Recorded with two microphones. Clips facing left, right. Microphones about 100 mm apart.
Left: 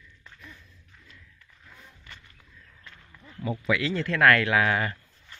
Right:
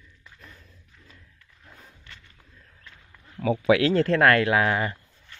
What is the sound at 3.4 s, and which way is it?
Speech, 80° right.